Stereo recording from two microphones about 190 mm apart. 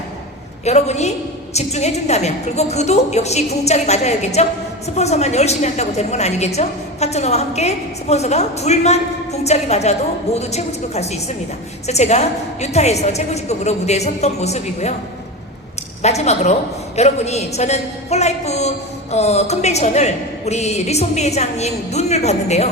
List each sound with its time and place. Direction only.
0.6 s a woman's voice: 35° left (ahead or behind)
16.0 s a woman's voice: 35° left (ahead or behind)